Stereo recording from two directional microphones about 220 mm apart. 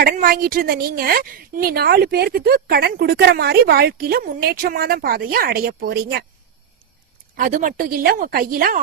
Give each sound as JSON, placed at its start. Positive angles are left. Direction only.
{"t": 0.0, "sound": "a woman's voice", "side_deg": -40}
{"t": 7.3, "sound": "a woman's voice", "side_deg": -35}